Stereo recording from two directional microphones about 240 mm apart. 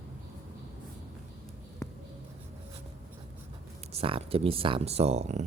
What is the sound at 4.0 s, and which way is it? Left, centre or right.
Speech, right.